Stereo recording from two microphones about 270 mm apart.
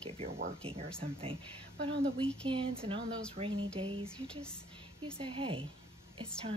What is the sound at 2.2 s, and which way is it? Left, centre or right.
Speech, centre.